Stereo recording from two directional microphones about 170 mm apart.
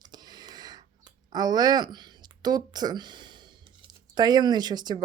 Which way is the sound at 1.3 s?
25° right (ahead or behind).